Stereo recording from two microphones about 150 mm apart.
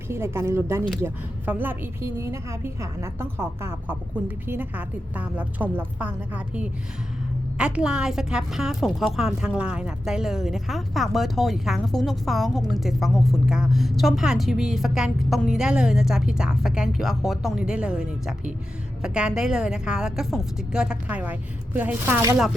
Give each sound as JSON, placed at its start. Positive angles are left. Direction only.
{"t": 0.1, "sound": "a woman's voice", "side_deg": -15}